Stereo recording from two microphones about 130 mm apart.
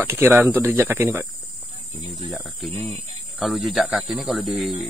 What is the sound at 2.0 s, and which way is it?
Speech, 55° right (ahead or behind).